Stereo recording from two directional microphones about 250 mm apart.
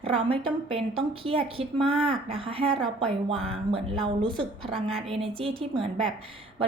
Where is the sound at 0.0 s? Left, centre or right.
Right.